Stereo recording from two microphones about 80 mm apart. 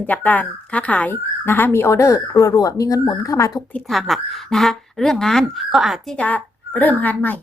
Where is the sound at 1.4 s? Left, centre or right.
Left.